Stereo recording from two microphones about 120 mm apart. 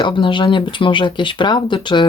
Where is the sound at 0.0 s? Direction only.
45° left (ahead or behind).